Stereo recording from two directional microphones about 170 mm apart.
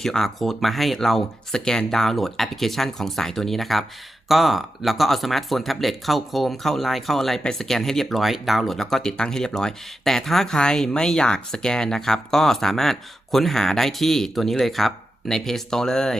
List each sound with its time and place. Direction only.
0.0 s speech: centre (ahead or behind)